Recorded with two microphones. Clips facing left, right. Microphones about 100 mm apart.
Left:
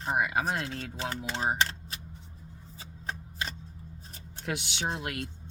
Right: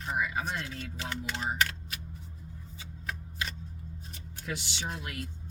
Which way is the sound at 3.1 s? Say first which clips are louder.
Left 1 dB; 30° left (ahead or behind).